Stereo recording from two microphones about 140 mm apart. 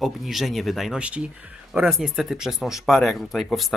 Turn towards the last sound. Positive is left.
turn(degrees=0)  # may be behind; listen again after turning